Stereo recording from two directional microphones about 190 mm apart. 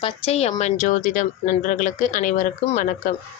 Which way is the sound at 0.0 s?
35° left (ahead or behind).